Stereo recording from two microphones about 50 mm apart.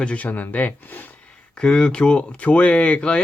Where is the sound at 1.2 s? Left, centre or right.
Centre.